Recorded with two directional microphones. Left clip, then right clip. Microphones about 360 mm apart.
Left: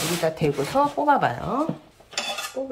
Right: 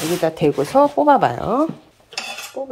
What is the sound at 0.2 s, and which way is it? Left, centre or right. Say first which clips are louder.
Speech: right 6 dB; right.